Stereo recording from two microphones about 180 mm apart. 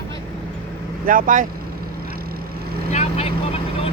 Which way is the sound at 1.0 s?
50° right (ahead or behind).